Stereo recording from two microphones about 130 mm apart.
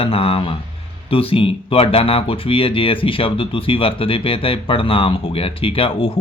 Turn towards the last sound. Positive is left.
turn(degrees=45)  # may be behind; listen again after turning